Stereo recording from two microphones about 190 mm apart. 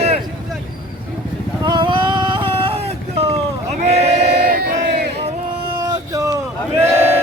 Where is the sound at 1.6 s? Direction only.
25° right (ahead or behind).